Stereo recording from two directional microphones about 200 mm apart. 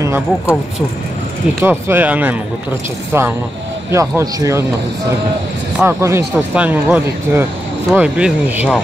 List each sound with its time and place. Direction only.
0.0 s speech: 10° right (ahead or behind)
1.6 s speech: 10° right (ahead or behind)
5.8 s speech: 10° right (ahead or behind)